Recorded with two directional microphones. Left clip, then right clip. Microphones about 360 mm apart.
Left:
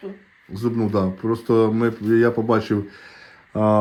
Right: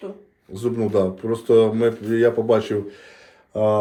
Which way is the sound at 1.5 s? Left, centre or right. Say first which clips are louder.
Right 3 dB; centre.